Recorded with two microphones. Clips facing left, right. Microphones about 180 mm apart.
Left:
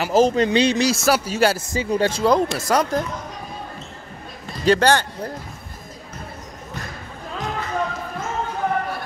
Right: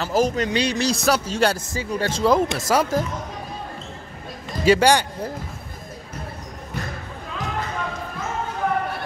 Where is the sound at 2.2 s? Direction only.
Centre (ahead or behind).